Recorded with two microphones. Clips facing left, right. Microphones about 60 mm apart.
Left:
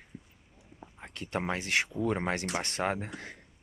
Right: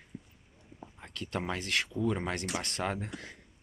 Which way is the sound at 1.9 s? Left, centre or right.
Left.